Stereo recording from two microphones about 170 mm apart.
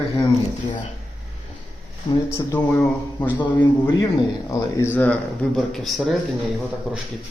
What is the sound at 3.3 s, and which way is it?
A man's voice, 25° left (ahead or behind).